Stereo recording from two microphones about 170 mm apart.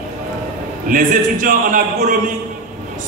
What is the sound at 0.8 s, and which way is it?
A man's voice, 55° right (ahead or behind).